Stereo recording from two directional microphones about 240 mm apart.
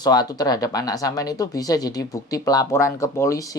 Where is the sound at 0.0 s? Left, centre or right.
Centre.